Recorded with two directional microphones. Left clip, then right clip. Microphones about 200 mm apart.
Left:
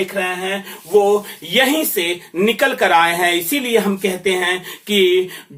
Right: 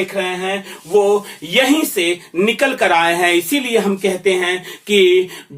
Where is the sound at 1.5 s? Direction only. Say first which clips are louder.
Right 1 dB; 20° right (ahead or behind).